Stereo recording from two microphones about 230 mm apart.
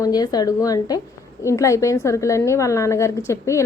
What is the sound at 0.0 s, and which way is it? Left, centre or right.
A woman's voice, centre.